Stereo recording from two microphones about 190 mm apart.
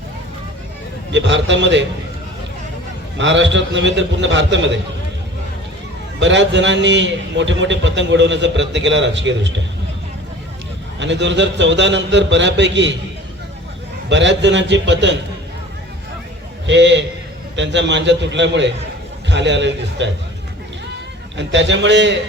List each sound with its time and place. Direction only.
1.1 s a man's voice: 70° right (ahead or behind)
3.2 s a man's voice: 70° right (ahead or behind)
6.1 s a man's voice: 70° right (ahead or behind)
11.0 s a man's voice: 70° right (ahead or behind)
14.1 s a man's voice: 70° right (ahead or behind)
16.6 s a man's voice: 70° right (ahead or behind)
21.3 s a man's voice: 70° right (ahead or behind)